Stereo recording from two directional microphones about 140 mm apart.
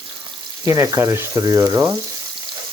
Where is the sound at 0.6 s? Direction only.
25° right (ahead or behind).